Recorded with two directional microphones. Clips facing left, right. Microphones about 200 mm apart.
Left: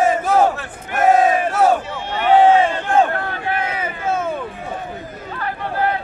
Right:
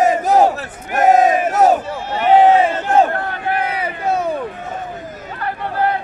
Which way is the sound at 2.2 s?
35° right (ahead or behind).